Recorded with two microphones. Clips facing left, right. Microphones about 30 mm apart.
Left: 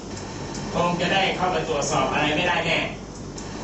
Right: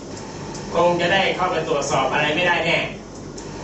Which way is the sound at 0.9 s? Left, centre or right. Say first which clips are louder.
Right 4 dB; centre.